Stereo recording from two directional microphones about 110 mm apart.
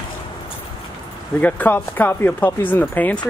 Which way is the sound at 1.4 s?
15° left (ahead or behind).